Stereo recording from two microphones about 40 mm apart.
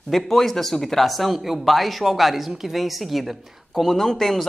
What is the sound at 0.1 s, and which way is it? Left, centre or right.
Speech, centre.